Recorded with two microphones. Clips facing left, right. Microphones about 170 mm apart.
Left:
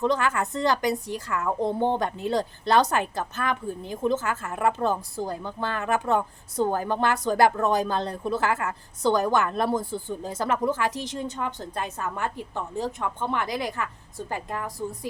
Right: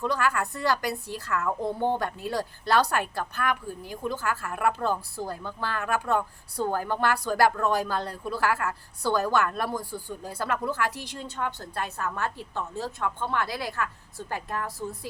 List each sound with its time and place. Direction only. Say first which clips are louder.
0.0 s a woman's voice: left 3 dB; 20° left (ahead or behind)